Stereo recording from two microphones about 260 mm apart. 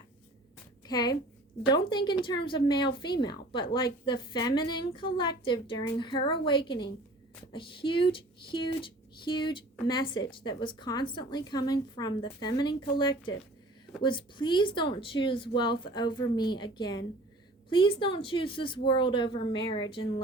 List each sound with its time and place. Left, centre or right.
0.9 s a woman's voice: centre
7.8 s a woman's voice: centre